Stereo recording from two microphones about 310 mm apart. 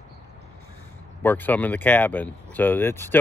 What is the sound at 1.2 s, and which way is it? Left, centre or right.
Speech, centre.